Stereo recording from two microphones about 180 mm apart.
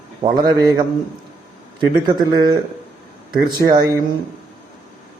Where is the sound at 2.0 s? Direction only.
25° right (ahead or behind).